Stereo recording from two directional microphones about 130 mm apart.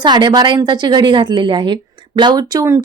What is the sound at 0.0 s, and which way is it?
A woman's voice, 35° right (ahead or behind).